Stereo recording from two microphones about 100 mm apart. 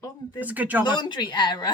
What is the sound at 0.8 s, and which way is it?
Speech, 50° left (ahead or behind).